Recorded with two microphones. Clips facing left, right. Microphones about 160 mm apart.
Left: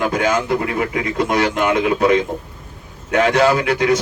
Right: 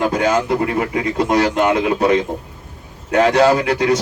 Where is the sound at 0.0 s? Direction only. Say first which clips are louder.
Right 2 dB; 35° right (ahead or behind).